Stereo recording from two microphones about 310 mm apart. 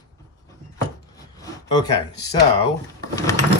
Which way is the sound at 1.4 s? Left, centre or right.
Centre.